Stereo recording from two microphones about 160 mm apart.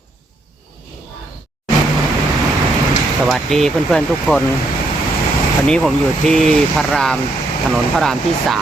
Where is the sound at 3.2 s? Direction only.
Centre (ahead or behind).